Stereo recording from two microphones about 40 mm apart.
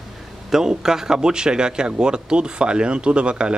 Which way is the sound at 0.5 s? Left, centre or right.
Centre.